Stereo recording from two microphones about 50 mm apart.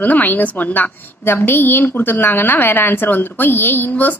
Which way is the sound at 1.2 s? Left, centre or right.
Left.